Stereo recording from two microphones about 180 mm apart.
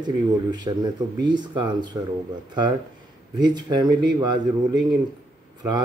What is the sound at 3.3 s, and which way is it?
Speech, 25° right (ahead or behind).